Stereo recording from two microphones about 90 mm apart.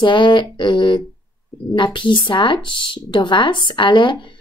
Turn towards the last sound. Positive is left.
turn(degrees=60)  # may be behind; listen again after turning